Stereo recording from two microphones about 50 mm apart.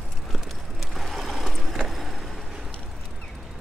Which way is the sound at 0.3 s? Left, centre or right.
Centre.